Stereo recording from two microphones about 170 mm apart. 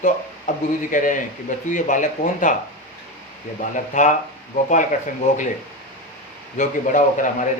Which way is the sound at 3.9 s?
45° left (ahead or behind).